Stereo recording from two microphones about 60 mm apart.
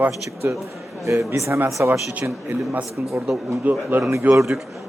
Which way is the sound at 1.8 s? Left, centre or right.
Right.